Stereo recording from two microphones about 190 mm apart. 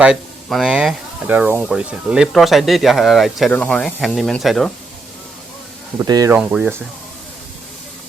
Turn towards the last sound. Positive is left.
turn(degrees=-5)  # may be behind; listen again after turning